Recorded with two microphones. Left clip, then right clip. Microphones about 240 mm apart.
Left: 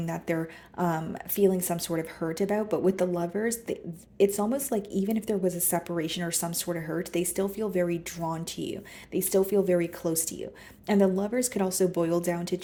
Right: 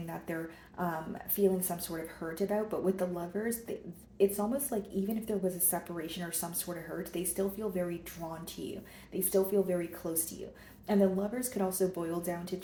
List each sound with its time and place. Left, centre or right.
1.4 s a woman's voice: left